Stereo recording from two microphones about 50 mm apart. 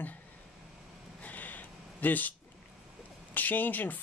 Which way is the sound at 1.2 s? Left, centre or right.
Left.